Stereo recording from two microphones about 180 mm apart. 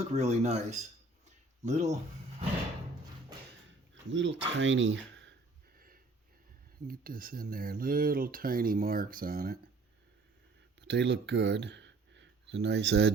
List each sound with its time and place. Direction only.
0.0 s speech: 35° right (ahead or behind)
4.1 s speech: 85° right
6.8 s speech: 50° right (ahead or behind)
10.8 s speech: 75° right (ahead or behind)